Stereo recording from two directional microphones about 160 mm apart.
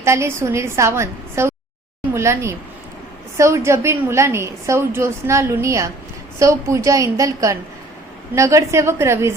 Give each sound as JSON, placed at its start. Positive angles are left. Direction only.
{"t": 0.0, "sound": "a woman's voice", "side_deg": -15}